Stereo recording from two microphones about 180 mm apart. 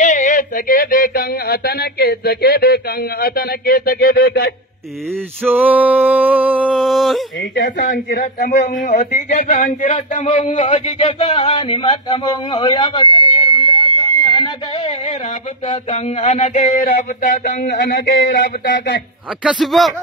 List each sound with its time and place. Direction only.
0.0 s speech: 45° left (ahead or behind); by 4.6 s 60° left (ahead or behind)
5.4 s a sound: 10° right (ahead or behind)
7.6 s speech: 75° left (ahead or behind)
8.2 s speech: 45° left (ahead or behind); by 13.3 s 25° left (ahead or behind)
13.3 s a sound: 30° left (ahead or behind)
15.7 s speech: 40° left (ahead or behind)
17.6 s speech: 70° left (ahead or behind)
19.4 s a man's voice: centre (ahead or behind)